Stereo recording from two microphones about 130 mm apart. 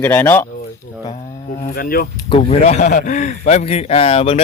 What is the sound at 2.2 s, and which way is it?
A man's voice, 50° left (ahead or behind).